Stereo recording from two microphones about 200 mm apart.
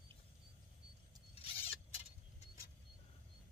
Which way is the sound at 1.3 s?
30° left (ahead or behind).